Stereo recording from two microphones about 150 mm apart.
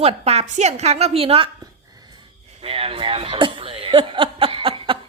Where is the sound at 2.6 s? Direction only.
40° right (ahead or behind).